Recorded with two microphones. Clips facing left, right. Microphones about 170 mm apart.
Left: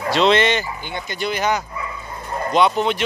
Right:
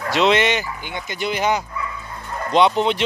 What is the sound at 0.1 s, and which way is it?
Speech, 15° right (ahead or behind).